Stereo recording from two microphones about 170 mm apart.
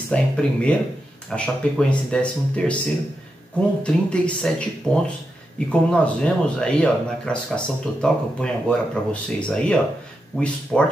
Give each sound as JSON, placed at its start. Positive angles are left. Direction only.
{"t": 0.1, "sound": "speech", "side_deg": 5}
{"t": 3.8, "sound": "speech", "side_deg": 5}